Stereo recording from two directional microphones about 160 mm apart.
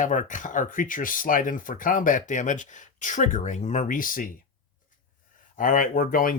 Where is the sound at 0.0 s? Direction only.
55° left (ahead or behind).